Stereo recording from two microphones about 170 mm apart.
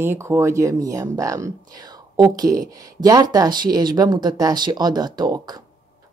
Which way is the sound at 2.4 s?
50° right (ahead or behind).